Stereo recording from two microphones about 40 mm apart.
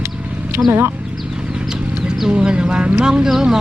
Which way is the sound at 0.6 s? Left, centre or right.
Right.